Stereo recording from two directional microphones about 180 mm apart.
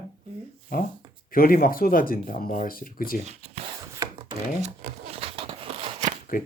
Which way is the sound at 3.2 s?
35° right (ahead or behind).